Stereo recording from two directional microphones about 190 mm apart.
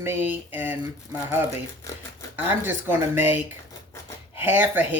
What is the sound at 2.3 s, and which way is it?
Speech, 10° right (ahead or behind).